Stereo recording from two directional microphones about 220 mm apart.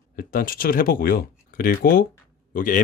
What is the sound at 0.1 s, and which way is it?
Speech, 40° left (ahead or behind).